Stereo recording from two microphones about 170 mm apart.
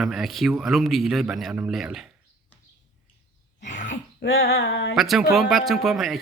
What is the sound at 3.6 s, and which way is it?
Throat clearing, 45° left (ahead or behind).